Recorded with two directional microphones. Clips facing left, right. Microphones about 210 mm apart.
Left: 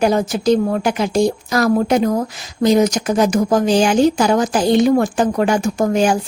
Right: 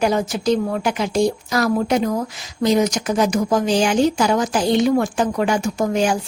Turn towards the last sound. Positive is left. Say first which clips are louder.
# left 3 dB
turn(degrees=50)  # may be behind; listen again after turning